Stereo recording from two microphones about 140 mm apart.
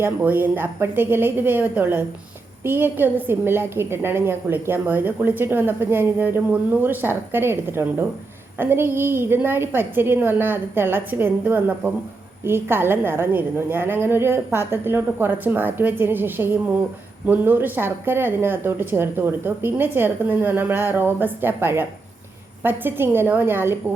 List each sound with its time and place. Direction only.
0.0 s a woman's voice: 15° right (ahead or behind)